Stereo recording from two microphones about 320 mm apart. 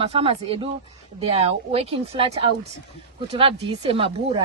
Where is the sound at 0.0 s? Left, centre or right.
Centre.